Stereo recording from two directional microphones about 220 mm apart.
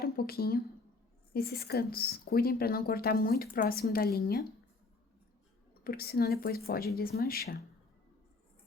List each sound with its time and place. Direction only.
0.0 s speech: 45° left (ahead or behind)
5.8 s speech: 45° left (ahead or behind)